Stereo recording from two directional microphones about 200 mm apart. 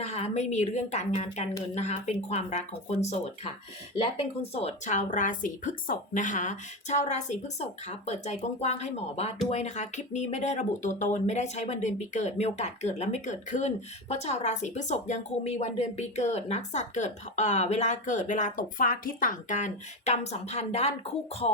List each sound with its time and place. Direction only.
0.0 s speech: 35° left (ahead or behind)
21.4 s music: 30° left (ahead or behind)